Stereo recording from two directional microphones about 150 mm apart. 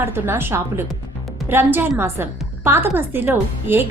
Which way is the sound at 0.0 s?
15° right (ahead or behind).